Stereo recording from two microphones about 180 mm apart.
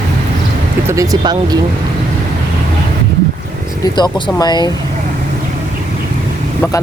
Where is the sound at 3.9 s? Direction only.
25° left (ahead or behind).